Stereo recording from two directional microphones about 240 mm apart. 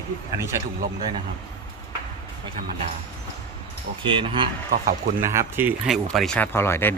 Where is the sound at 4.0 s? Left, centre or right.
Right; by 6.9 s centre.